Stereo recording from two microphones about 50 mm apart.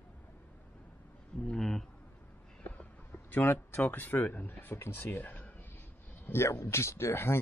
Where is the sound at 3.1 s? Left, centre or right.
Left.